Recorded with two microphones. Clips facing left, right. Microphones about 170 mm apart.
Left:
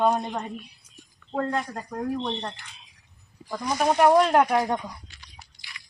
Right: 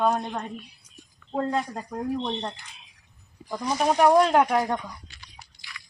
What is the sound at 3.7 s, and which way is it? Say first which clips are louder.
Speech: even; 5° left (ahead or behind).